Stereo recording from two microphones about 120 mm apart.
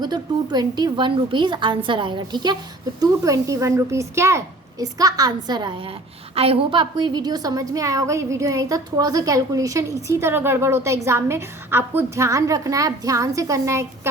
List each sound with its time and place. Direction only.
0.0 s a woman's voice: 35° right (ahead or behind)
6.3 s a woman's voice: 55° right (ahead or behind); by 14.1 s 25° right (ahead or behind)